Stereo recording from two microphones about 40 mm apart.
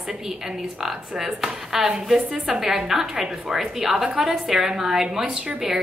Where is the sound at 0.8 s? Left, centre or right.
Centre.